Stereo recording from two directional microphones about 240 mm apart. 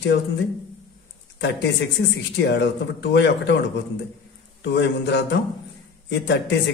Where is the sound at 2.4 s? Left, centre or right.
Left.